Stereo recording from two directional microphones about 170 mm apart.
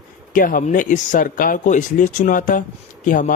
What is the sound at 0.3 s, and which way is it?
Speech, 55° left (ahead or behind).